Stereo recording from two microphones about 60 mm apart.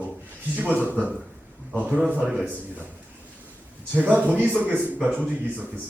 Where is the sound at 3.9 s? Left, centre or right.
Right.